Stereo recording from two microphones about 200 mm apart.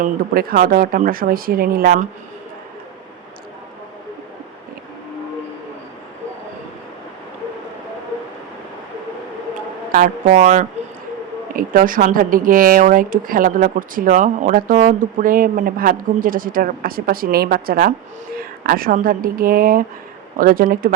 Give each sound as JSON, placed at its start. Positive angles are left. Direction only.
{"t": 0.0, "sound": "a woman's voice", "side_deg": -45}
{"t": 9.9, "sound": "a woman's voice", "side_deg": -40}